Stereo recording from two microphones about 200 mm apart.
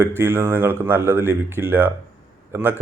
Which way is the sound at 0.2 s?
10° right (ahead or behind).